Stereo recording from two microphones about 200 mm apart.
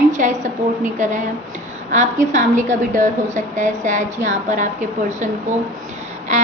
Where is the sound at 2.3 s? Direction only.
40° right (ahead or behind).